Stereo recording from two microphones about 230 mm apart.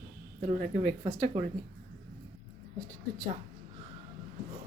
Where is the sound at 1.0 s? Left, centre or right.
Right.